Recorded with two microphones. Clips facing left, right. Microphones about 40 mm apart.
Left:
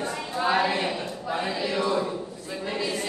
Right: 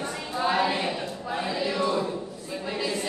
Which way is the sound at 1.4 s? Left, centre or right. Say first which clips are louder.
Right 1 dB; centre.